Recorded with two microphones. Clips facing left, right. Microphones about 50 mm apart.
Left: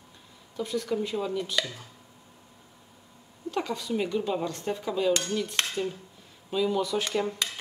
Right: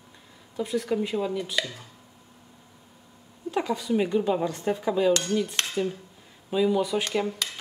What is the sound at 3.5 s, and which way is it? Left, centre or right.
Speech, right.